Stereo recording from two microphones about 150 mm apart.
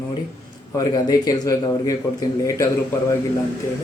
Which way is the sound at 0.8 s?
25° left (ahead or behind).